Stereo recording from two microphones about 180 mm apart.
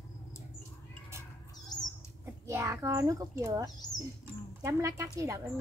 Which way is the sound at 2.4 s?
15° right (ahead or behind).